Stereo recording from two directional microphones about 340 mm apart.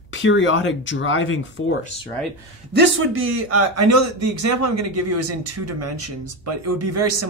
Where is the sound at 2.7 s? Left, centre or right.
Right.